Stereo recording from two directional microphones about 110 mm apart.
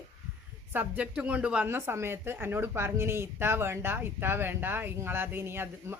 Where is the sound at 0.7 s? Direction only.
15° right (ahead or behind).